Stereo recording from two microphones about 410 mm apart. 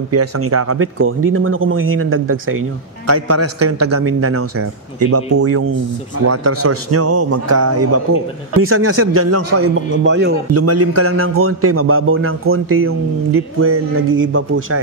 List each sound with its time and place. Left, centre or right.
0.1 s speech: right